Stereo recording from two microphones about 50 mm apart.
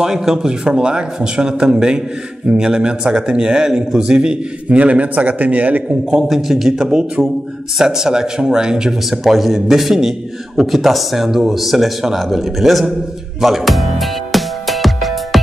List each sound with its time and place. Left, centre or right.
0.0 s a man's voice: centre; by 5.8 s right
5.9 s a man's voice: centre
6.2 s a man's voice: centre
13.4 s music: centre